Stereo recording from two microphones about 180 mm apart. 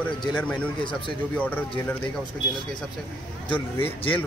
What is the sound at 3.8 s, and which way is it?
Speech, 30° left (ahead or behind).